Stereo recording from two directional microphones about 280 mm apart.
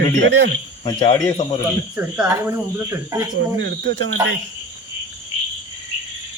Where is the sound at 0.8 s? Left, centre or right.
Centre.